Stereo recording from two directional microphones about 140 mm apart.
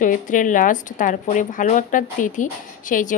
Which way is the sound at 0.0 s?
70° left (ahead or behind).